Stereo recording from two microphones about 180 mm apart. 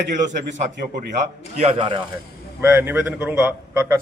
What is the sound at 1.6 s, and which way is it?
Speech, 30° right (ahead or behind).